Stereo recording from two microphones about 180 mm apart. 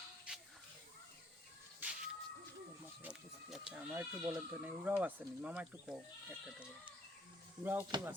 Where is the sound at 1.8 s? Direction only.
10° right (ahead or behind).